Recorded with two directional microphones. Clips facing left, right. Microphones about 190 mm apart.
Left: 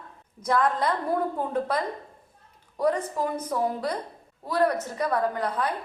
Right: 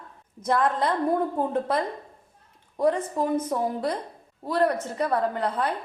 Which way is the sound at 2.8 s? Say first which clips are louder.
Right 2 dB; 25° right (ahead or behind).